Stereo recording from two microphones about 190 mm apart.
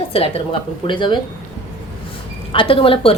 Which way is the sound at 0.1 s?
30° left (ahead or behind).